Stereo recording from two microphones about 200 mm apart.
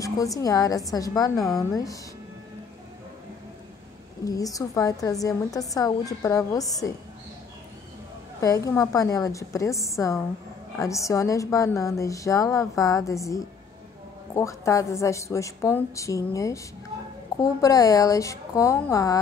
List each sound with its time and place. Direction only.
0.0 s a woman's voice: 15° left (ahead or behind)
4.2 s a woman's voice: 15° left (ahead or behind)
8.4 s a woman's voice: 15° left (ahead or behind)